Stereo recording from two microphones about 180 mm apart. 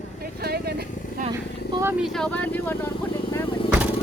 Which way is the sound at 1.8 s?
10° right (ahead or behind).